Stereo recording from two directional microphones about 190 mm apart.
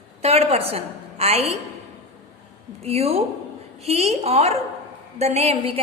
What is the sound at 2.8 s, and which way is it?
A woman's voice, 35° right (ahead or behind).